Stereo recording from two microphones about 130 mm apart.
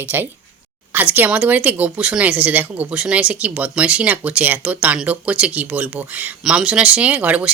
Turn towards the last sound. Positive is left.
turn(degrees=-10)  # may be behind; listen again after turning